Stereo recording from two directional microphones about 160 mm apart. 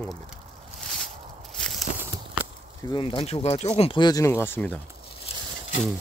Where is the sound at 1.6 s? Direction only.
Centre (ahead or behind).